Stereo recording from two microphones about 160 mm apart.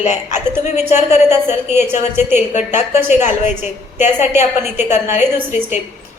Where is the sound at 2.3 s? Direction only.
50° left (ahead or behind).